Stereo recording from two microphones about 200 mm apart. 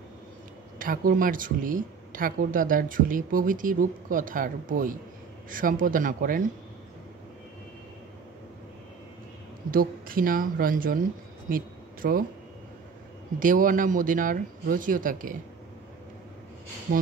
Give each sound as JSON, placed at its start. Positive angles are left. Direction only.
{"t": 0.7, "sound": "speech", "side_deg": -45}
{"t": 9.7, "sound": "speech", "side_deg": -45}
{"t": 13.4, "sound": "speech", "side_deg": -45}